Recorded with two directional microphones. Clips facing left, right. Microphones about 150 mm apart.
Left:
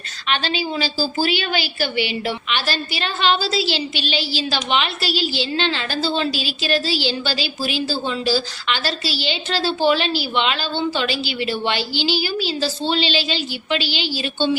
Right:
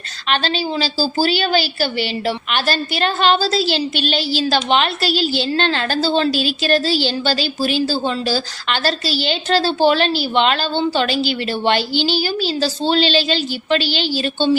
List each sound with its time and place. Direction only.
0.3 s a woman's voice: 35° right (ahead or behind)